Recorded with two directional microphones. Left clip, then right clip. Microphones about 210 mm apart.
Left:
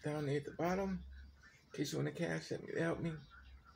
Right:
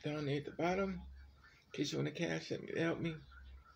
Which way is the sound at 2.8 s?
25° right (ahead or behind).